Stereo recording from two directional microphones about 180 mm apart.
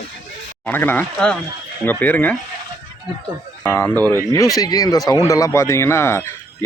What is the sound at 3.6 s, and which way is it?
A man's voice, 15° left (ahead or behind).